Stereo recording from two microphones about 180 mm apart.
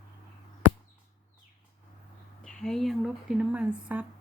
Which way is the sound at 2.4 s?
5° left (ahead or behind).